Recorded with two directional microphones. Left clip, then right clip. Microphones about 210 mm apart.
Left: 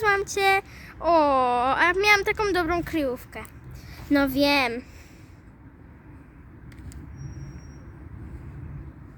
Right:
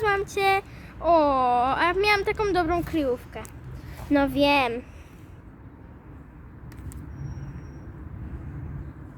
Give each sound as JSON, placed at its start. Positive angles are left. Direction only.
{"t": 0.0, "sound": "speech", "side_deg": 45}